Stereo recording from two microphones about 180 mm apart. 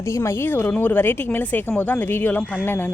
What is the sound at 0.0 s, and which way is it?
Speech, 15° left (ahead or behind).